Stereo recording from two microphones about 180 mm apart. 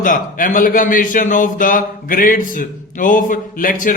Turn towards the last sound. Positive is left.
turn(degrees=50)  # may be behind; listen again after turning